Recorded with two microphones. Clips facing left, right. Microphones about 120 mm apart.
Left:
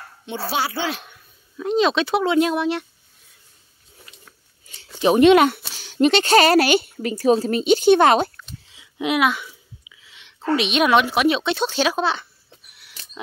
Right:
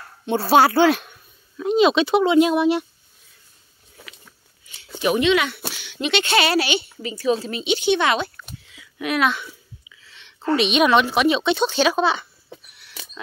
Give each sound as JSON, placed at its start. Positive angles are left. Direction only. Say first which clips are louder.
{"t": 0.3, "sound": "speech", "louder": "right 9 dB", "side_deg": -50}
{"t": 1.6, "sound": "speech", "louder": "right 2 dB", "side_deg": -5}
{"t": 5.2, "sound": "speech", "louder": "left 7 dB", "side_deg": 45}
{"t": 8.6, "sound": "a sound", "louder": "left 3 dB", "side_deg": 25}
{"t": 9.2, "sound": "a sound", "louder": "left 1 dB", "side_deg": 5}
{"t": 10.5, "sound": "speech", "louder": "right 1 dB", "side_deg": 0}